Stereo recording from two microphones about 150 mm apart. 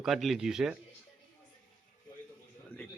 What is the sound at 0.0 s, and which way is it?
Speech, centre (ahead or behind).